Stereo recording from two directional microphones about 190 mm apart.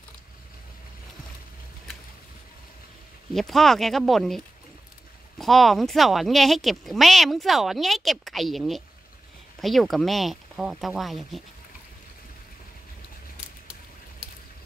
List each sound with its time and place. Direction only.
3.3 s speech: centre (ahead or behind)
5.4 s speech: centre (ahead or behind)